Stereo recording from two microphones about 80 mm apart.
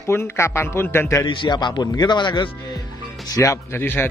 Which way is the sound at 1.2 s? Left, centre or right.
Left.